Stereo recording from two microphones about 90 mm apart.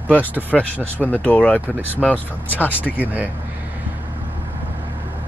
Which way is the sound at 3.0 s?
15° right (ahead or behind).